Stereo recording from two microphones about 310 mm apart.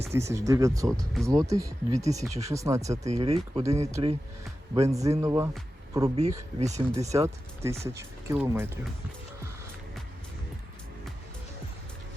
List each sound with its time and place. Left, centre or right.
0.1 s speech: centre
7.1 s speech: centre